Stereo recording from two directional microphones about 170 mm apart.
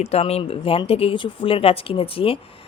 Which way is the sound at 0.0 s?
35° left (ahead or behind).